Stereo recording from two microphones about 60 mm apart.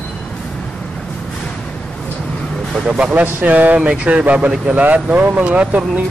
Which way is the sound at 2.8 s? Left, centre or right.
Centre.